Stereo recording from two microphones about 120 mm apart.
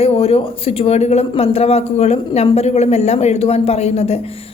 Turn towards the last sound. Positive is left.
turn(degrees=60)  # may be behind; listen again after turning